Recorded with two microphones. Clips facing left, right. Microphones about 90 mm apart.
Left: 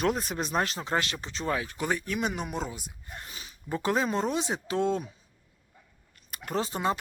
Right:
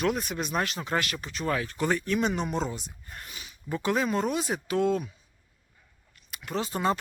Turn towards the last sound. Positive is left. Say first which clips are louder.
# right 2 dB
turn(degrees=15)  # may be behind; listen again after turning